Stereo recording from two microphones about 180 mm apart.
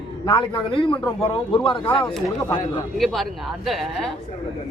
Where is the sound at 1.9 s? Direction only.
Centre (ahead or behind).